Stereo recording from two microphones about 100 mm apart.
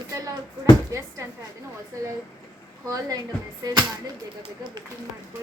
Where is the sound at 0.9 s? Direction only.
35° right (ahead or behind).